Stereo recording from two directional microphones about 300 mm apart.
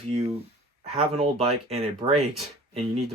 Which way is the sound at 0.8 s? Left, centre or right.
Centre.